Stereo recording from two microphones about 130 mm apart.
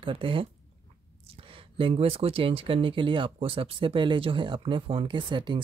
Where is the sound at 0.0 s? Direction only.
40° right (ahead or behind).